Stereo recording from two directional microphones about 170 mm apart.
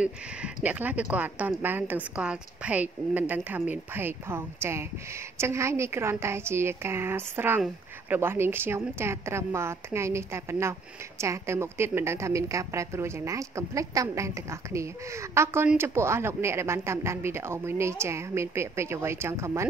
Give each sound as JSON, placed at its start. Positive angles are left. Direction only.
{"t": 0.0, "sound": "a woman's voice", "side_deg": -5}